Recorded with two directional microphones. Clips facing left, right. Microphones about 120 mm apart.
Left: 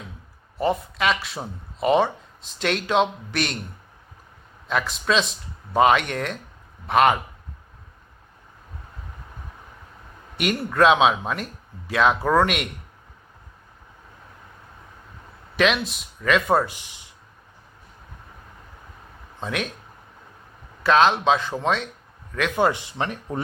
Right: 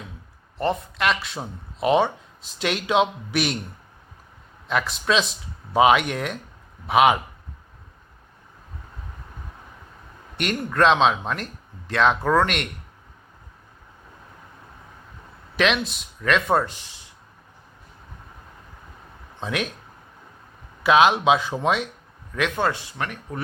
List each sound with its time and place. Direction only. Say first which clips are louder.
0.6 s speech: left 1 dB; centre (ahead or behind)
4.7 s speech: even; centre (ahead or behind)
10.3 s speech: left 1 dB; 5° left (ahead or behind)
15.5 s speech: left 1 dB; centre (ahead or behind)
16.7 s speech: even; 15° left (ahead or behind)
19.4 s speech: right 1 dB; centre (ahead or behind)
20.8 s speech: right 1 dB; 10° right (ahead or behind)
22.5 s speech: left 3 dB; 15° left (ahead or behind)